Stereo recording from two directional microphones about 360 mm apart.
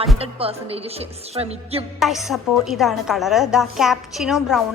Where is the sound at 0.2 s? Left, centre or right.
Centre.